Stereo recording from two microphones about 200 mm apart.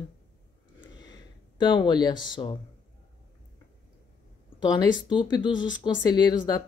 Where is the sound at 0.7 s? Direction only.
20° left (ahead or behind).